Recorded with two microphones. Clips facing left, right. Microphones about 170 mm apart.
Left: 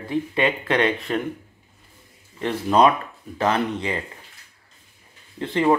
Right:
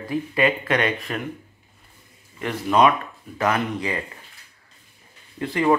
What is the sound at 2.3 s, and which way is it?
Speech, 30° left (ahead or behind).